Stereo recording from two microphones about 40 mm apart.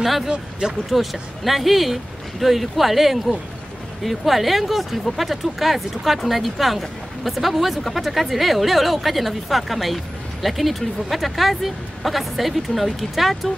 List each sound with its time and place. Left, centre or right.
0.0 s speech: centre
0.3 s speech: right
0.8 s speech: centre